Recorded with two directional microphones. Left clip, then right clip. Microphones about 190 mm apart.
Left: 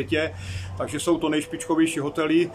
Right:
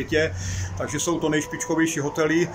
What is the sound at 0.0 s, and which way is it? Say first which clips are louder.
Speech: right 2 dB; centre (ahead or behind).